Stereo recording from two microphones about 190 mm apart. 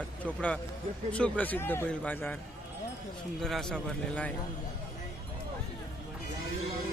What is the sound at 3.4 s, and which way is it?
Speech, centre (ahead or behind).